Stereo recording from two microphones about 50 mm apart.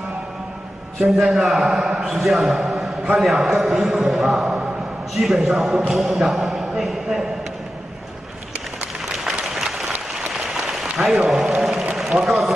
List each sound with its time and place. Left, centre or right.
0.9 s a man's voice: centre
9.1 s applause: centre
11.9 s a sound: centre
12.3 s speech: centre